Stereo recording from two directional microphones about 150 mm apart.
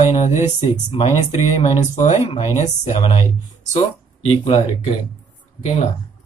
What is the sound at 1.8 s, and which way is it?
Speech, 50° left (ahead or behind).